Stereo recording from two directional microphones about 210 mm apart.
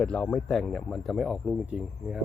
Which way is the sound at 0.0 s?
5° left (ahead or behind).